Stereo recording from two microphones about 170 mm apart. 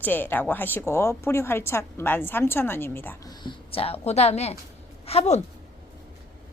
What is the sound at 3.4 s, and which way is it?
A woman's voice, 30° left (ahead or behind).